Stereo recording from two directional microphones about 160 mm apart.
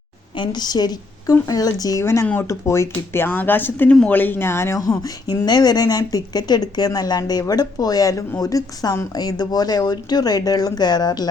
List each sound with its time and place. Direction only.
0.3 s speech: 30° left (ahead or behind)